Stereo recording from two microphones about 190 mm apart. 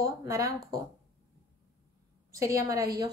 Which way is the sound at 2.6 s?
15° right (ahead or behind).